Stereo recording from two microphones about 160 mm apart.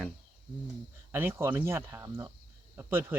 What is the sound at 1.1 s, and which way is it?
Speech, 15° right (ahead or behind).